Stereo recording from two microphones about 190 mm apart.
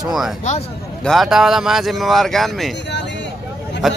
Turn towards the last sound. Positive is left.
turn(degrees=0)  # may be behind; listen again after turning